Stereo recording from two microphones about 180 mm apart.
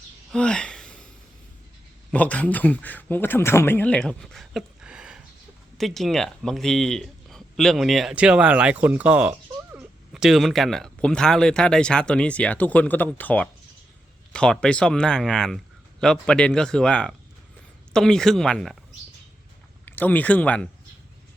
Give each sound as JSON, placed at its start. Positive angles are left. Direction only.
{"t": 0.3, "sound": "a sound", "side_deg": 5}
{"t": 2.0, "sound": "speech", "side_deg": 10}
{"t": 19.8, "sound": "speech", "side_deg": 10}